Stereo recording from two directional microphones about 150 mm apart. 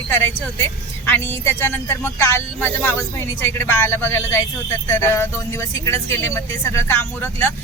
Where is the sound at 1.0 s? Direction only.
15° left (ahead or behind).